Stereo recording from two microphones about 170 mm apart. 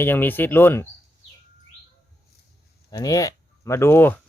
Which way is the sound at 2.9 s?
20° left (ahead or behind).